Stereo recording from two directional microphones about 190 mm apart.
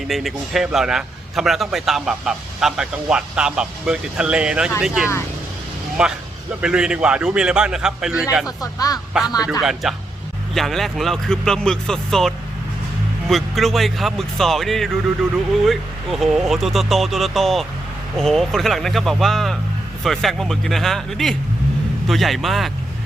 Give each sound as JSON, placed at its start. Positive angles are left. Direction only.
{"t": 0.1, "sound": "a man's voice", "side_deg": 0}
{"t": 8.4, "sound": "speech", "side_deg": 20}
{"t": 9.5, "sound": "a man's voice", "side_deg": 0}